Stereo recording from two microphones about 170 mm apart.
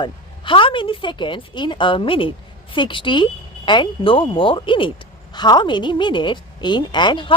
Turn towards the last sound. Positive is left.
turn(degrees=30)  # may be behind; listen again after turning